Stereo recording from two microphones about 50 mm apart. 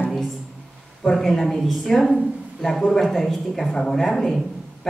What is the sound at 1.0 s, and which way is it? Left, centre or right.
A woman's voice, centre.